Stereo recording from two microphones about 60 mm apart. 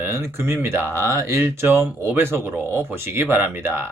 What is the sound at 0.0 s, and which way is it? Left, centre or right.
Speech, right.